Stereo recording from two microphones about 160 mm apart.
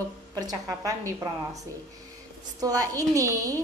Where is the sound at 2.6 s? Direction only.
20° right (ahead or behind).